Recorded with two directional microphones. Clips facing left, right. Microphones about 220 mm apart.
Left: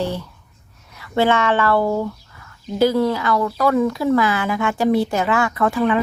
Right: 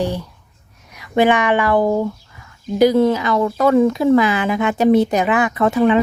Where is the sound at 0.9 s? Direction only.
15° right (ahead or behind).